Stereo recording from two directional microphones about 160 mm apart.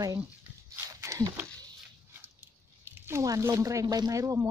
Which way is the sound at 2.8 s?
15° right (ahead or behind).